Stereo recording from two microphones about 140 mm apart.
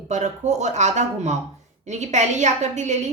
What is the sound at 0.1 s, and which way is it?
A woman's voice, 55° right (ahead or behind).